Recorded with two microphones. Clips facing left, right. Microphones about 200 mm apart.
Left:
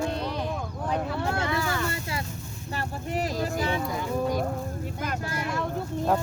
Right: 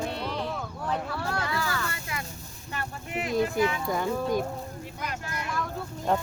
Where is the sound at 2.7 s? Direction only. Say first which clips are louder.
Left 4 dB; 35° left (ahead or behind).